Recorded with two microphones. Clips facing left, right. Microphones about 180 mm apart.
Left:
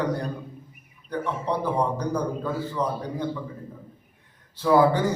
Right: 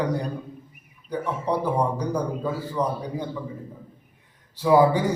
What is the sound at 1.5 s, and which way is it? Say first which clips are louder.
A man's voice: right 2 dB; 15° right (ahead or behind).